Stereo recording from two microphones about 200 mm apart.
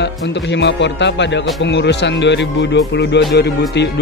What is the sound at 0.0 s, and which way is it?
Speech, 60° left (ahead or behind).